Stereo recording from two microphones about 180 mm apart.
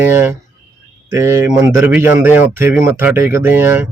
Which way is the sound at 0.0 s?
10° right (ahead or behind).